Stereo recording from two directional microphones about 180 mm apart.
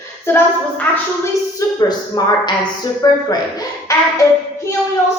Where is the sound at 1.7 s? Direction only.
25° left (ahead or behind).